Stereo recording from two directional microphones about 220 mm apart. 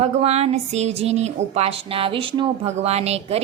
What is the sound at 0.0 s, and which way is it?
Speech, 30° right (ahead or behind).